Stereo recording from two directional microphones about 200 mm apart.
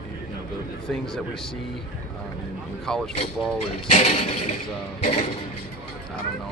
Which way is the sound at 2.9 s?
5° left (ahead or behind).